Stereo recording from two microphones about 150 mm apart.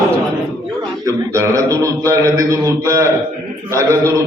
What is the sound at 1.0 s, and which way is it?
A man's voice, 20° right (ahead or behind).